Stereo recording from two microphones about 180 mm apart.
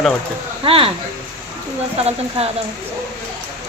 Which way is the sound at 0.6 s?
30° right (ahead or behind).